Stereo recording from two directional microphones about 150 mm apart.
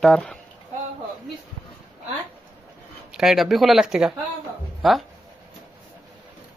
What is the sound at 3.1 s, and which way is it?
Speech, 5° right (ahead or behind).